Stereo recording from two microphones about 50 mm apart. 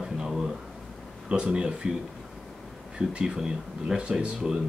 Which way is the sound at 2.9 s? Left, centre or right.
Centre.